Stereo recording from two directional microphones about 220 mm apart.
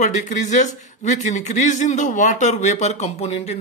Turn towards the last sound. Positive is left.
turn(degrees=30)  # may be behind; listen again after turning